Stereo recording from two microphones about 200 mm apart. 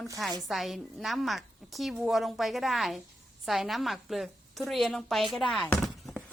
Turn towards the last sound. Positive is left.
turn(degrees=0)  # may be behind; listen again after turning